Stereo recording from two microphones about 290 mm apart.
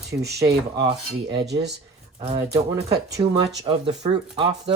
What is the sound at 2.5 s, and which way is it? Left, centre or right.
Speech, right.